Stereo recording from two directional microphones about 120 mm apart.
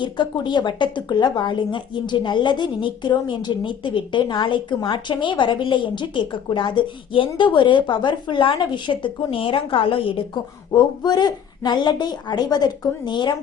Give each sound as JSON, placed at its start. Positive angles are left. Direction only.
{"t": 0.0, "sound": "a woman's voice", "side_deg": 40}
{"t": 10.8, "sound": "speech", "side_deg": 35}